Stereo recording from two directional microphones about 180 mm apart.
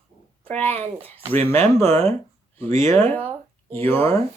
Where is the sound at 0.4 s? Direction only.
10° left (ahead or behind).